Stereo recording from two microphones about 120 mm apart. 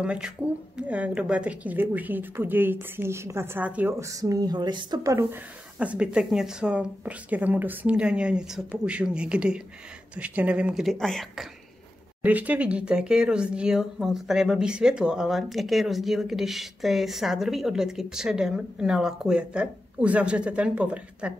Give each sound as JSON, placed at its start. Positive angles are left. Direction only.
{"t": 0.0, "sound": "a woman's voice", "side_deg": -10}
{"t": 4.0, "sound": "speech", "side_deg": -30}
{"t": 5.8, "sound": "a woman's voice", "side_deg": -10}
{"t": 12.2, "sound": "speech", "side_deg": -15}